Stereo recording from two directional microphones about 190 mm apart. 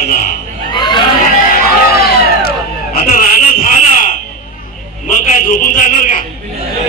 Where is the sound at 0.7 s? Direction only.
25° left (ahead or behind).